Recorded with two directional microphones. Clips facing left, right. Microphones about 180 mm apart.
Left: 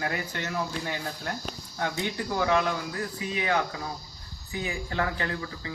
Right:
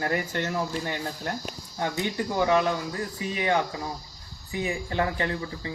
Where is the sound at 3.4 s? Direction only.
25° right (ahead or behind).